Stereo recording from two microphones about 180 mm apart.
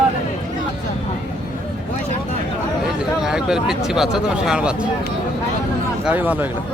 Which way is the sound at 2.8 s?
5° right (ahead or behind).